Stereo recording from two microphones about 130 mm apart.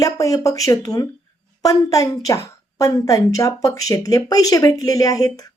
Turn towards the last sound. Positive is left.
turn(degrees=30)  # may be behind; listen again after turning